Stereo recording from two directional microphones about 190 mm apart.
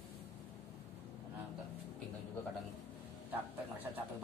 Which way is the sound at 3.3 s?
10° right (ahead or behind).